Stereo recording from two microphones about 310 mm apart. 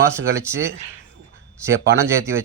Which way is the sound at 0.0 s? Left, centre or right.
Centre.